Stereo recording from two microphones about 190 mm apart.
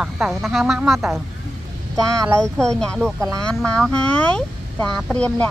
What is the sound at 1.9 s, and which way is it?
Speech, 15° right (ahead or behind).